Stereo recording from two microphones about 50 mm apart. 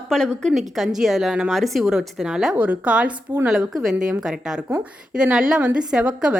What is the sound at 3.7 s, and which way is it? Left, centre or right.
A woman's voice, centre.